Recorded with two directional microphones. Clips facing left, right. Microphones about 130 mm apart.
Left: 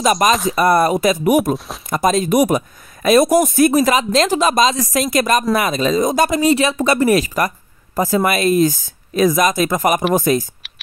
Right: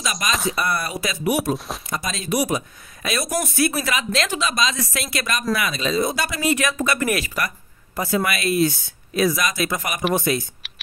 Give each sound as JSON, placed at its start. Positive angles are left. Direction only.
{"t": 0.3, "sound": "speech", "side_deg": 0}
{"t": 0.6, "sound": "speech", "side_deg": 45}